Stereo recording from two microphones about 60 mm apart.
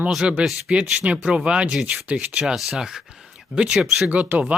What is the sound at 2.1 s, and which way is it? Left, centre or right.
Speech, centre.